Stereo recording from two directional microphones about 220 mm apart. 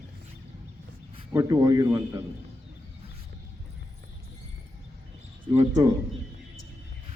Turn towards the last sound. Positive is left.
turn(degrees=-15)  # may be behind; listen again after turning